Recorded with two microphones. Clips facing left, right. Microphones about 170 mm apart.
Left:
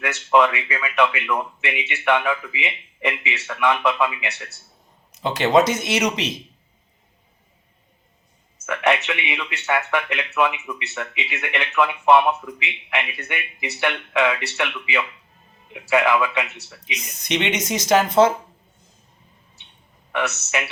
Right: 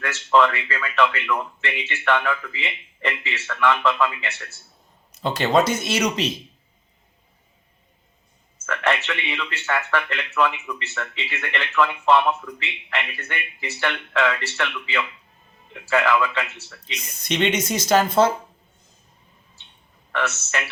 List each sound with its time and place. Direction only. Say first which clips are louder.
0.0 s speech: left 1 dB; 15° left (ahead or behind)
8.6 s speech: left 3 dB; 15° left (ahead or behind)
20.1 s speech: left 2 dB; 15° left (ahead or behind)